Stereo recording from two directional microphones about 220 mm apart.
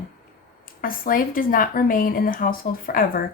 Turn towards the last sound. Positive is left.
turn(degrees=40)  # may be behind; listen again after turning